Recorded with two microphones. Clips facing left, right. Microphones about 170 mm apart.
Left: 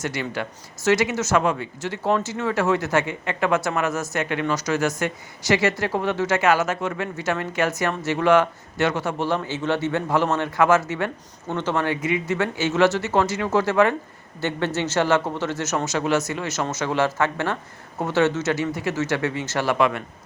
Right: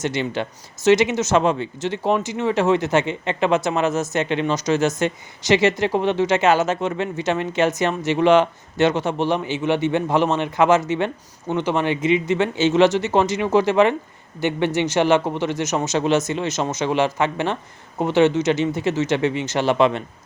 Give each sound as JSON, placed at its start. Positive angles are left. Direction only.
{"t": 0.0, "sound": "speech", "side_deg": -25}